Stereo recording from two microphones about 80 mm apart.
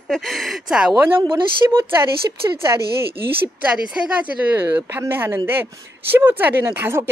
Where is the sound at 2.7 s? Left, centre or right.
Right.